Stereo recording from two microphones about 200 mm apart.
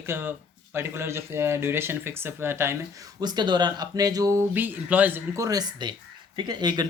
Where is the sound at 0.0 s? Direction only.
10° right (ahead or behind).